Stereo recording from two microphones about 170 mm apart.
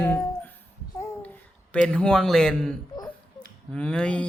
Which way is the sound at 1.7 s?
5° left (ahead or behind).